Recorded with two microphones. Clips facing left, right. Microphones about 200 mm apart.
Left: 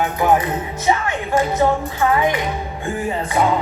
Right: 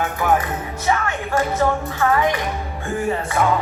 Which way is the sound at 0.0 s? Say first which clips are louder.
Left 3 dB; 20° left (ahead or behind).